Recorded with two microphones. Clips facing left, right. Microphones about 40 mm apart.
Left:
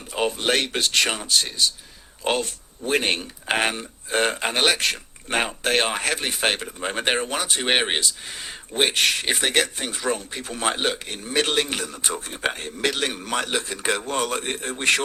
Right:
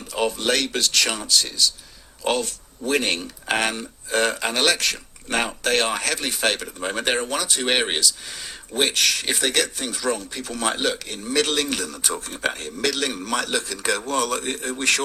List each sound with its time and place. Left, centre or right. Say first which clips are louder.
0.1 s speech: even; left